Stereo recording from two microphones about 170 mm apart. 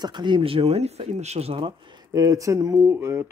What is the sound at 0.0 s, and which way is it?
Speech, 25° right (ahead or behind).